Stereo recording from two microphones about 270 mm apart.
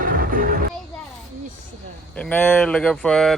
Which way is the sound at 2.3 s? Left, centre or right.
Centre.